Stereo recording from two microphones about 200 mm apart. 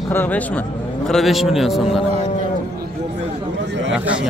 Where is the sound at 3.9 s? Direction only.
5° right (ahead or behind).